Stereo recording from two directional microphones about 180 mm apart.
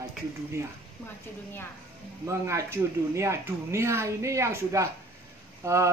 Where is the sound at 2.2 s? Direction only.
15° right (ahead or behind).